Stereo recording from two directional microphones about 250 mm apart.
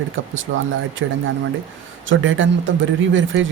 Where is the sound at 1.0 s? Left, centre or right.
Right.